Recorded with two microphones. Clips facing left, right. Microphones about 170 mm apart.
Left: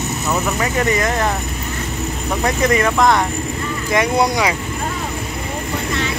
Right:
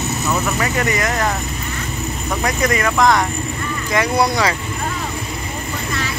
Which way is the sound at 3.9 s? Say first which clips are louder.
Left 1 dB; 20° left (ahead or behind).